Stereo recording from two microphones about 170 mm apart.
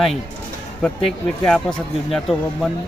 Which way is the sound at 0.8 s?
5° left (ahead or behind).